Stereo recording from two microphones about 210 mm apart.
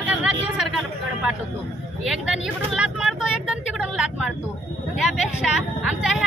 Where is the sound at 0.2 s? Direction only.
5° right (ahead or behind).